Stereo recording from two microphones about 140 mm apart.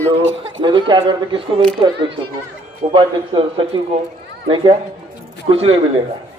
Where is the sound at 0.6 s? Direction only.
35° right (ahead or behind).